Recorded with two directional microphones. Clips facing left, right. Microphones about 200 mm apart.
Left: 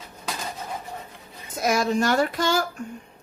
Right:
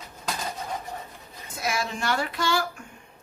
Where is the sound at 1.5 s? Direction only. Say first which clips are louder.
Left 7 dB; 40° left (ahead or behind).